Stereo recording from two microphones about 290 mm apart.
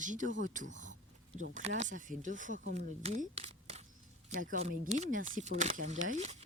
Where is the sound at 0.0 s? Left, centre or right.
Right.